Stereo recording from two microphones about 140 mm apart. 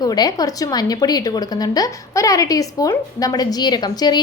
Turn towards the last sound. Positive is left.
turn(degrees=30)  # may be behind; listen again after turning